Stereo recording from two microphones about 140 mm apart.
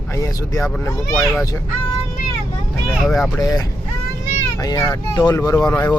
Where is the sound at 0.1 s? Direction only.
25° left (ahead or behind).